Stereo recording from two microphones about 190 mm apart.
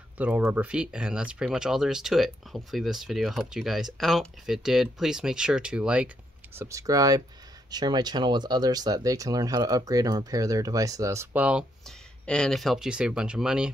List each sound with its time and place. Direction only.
0.2 s speech: 10° right (ahead or behind)